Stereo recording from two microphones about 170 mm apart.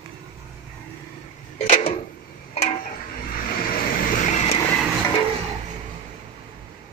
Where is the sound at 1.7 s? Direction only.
35° left (ahead or behind).